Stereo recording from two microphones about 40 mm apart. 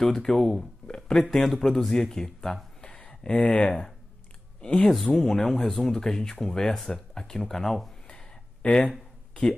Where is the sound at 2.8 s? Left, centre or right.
Left.